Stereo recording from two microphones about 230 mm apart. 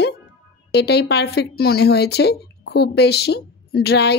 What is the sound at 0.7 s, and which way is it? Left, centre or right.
Speech, left.